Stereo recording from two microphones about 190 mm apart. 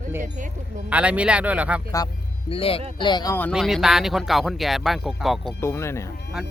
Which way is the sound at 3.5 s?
Centre (ahead or behind).